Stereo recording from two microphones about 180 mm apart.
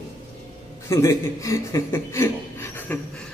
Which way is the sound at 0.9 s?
15° left (ahead or behind).